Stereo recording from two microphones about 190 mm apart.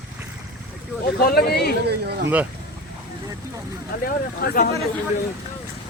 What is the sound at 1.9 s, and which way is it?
Speech, 60° right (ahead or behind).